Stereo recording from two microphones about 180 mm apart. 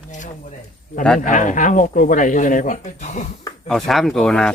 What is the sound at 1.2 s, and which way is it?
Speech, 45° left (ahead or behind).